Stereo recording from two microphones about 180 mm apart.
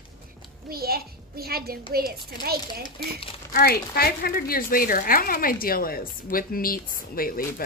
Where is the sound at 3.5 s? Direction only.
60° left (ahead or behind).